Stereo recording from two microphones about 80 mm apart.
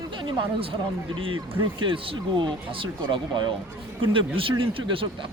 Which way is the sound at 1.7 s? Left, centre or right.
Right.